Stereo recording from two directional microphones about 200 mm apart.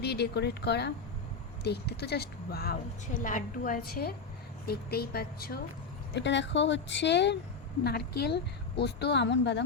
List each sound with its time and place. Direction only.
0.0 s a woman's voice: 55° left (ahead or behind)
3.2 s speech: 40° left (ahead or behind)
6.1 s a woman's voice: 65° left (ahead or behind)